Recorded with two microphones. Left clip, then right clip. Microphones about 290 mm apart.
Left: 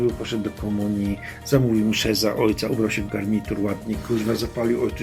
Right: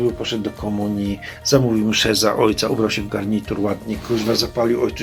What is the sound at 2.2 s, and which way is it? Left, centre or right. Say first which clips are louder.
Speech: right 5 dB; centre.